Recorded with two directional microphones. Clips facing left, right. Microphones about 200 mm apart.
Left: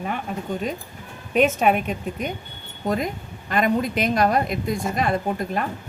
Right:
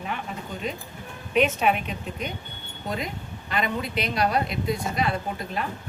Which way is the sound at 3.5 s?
45° left (ahead or behind).